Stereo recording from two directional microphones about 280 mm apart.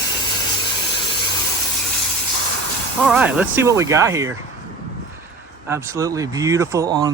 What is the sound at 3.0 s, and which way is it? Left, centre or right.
Speech, centre.